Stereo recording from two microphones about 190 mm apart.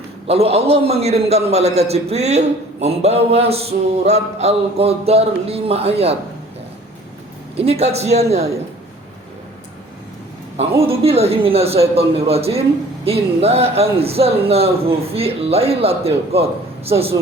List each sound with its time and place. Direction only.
0.3 s a man's voice: 30° right (ahead or behind)
7.5 s a man's voice: 30° right (ahead or behind)
10.6 s a man's voice: 30° right (ahead or behind)